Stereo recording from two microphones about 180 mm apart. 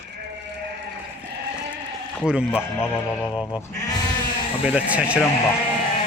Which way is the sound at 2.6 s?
10° left (ahead or behind).